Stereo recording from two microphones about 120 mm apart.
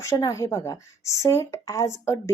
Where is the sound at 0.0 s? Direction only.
25° left (ahead or behind).